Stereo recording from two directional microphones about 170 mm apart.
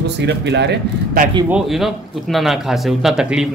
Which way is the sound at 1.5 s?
Centre (ahead or behind).